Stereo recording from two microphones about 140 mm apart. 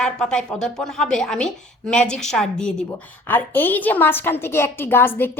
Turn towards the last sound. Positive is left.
turn(degrees=15)  # may be behind; listen again after turning